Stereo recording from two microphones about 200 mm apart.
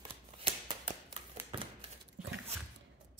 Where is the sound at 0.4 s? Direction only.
30° right (ahead or behind).